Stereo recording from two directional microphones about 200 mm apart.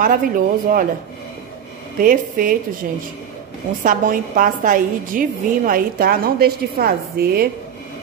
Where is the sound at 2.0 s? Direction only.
45° right (ahead or behind).